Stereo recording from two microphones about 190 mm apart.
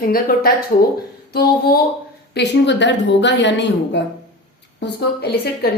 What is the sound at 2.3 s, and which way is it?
A woman's voice, 65° left (ahead or behind).